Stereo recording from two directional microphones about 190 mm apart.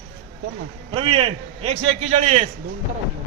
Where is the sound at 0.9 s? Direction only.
30° right (ahead or behind).